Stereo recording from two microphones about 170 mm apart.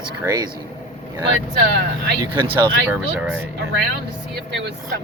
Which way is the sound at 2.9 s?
5° right (ahead or behind).